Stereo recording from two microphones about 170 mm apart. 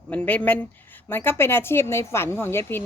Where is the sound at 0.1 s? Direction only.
10° left (ahead or behind).